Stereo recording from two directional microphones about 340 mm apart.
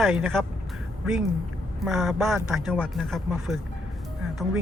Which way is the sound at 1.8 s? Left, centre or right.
Centre.